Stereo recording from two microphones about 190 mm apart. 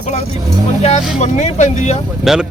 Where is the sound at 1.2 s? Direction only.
40° left (ahead or behind).